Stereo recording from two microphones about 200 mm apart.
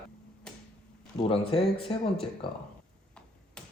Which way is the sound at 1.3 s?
30° left (ahead or behind).